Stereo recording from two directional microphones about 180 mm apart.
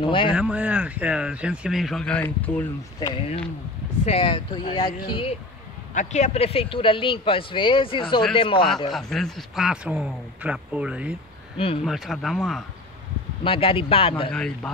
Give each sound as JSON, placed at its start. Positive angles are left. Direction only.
{"t": 0.0, "sound": "speech", "side_deg": 30}
{"t": 0.3, "sound": "speech", "side_deg": -5}
{"t": 3.0, "sound": "speech", "side_deg": 20}
{"t": 4.0, "sound": "speech", "side_deg": 35}
{"t": 5.9, "sound": "speech", "side_deg": 40}
{"t": 8.9, "sound": "speech", "side_deg": 0}
{"t": 11.5, "sound": "speech", "side_deg": 30}
{"t": 11.8, "sound": "speech", "side_deg": 0}
{"t": 13.4, "sound": "speech", "side_deg": 30}
{"t": 14.3, "sound": "speech", "side_deg": 5}